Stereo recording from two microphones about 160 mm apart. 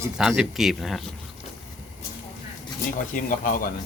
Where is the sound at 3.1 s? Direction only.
55° left (ahead or behind).